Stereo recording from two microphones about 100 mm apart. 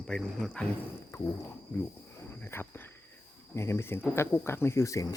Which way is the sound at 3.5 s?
25° left (ahead or behind).